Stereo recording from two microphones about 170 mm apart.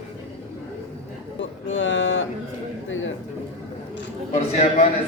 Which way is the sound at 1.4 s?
90° left.